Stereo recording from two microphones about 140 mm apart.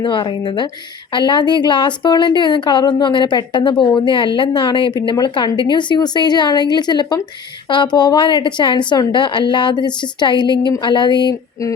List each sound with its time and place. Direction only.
0.0 s a woman's voice: 35° left (ahead or behind)